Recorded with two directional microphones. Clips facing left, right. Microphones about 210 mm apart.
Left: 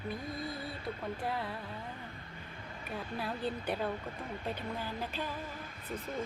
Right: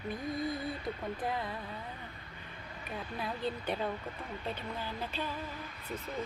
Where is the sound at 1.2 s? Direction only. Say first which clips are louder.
Right 1 dB; 5° left (ahead or behind).